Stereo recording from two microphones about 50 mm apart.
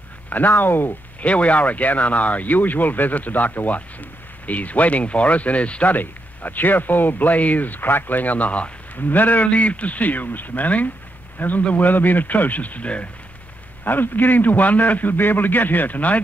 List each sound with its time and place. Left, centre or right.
0.3 s speech: left
1.2 s speech: left
8.9 s a man's voice: left
13.8 s speech: left